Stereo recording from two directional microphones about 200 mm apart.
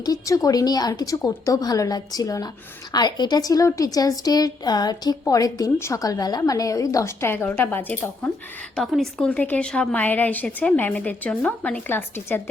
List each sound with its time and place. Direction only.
0.0 s a woman's voice: 20° left (ahead or behind)